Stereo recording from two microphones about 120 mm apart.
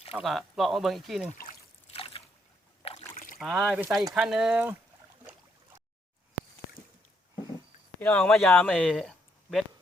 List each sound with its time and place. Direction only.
0.2 s speech: centre (ahead or behind)
1.2 s trickle: 75° left (ahead or behind)
2.0 s boat: 50° left (ahead or behind)
2.8 s rowboat: 55° left (ahead or behind)
3.3 s speech: 5° right (ahead or behind)
4.5 s speech: 15° right (ahead or behind)
8.0 s speech: 15° left (ahead or behind)